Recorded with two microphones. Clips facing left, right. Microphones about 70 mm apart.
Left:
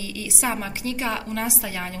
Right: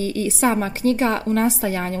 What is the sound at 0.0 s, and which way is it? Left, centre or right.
A woman's voice, right.